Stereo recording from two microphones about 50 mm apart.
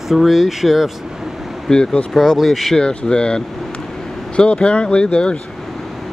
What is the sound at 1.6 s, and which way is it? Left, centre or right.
Speech, centre.